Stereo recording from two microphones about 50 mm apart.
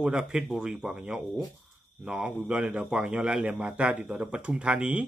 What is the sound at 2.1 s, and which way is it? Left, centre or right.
Speech, centre.